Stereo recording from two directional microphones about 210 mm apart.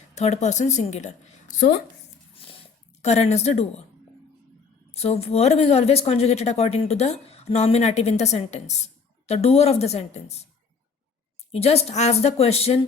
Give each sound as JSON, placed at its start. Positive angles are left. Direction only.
{"t": 0.1, "sound": "a woman's voice", "side_deg": 30}
{"t": 3.0, "sound": "a woman's voice", "side_deg": 30}
{"t": 4.9, "sound": "a woman's voice", "side_deg": 30}
{"t": 11.5, "sound": "speech", "side_deg": 30}